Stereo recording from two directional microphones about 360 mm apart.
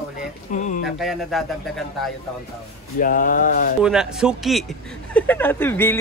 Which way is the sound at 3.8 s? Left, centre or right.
Centre.